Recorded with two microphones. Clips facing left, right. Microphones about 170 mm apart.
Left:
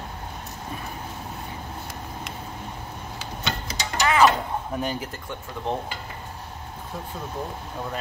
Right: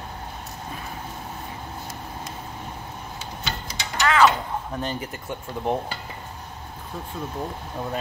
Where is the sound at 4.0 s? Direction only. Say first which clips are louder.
Even; 15° left (ahead or behind).